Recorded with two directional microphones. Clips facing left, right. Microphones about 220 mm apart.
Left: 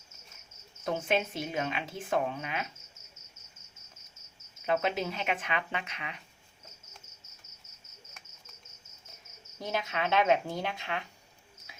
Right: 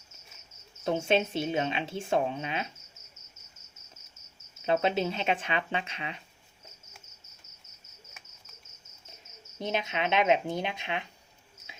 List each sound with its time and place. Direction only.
0.9 s a woman's voice: 25° right (ahead or behind)
4.6 s a woman's voice: 30° right (ahead or behind)
9.6 s a woman's voice: 20° right (ahead or behind)